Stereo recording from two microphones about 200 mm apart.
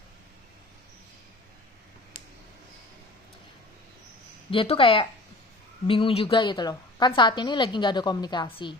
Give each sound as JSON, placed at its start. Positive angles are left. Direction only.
{"t": 4.5, "sound": "a woman's voice", "side_deg": 30}